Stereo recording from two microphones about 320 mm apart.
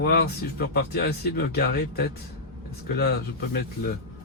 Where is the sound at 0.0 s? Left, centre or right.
Left.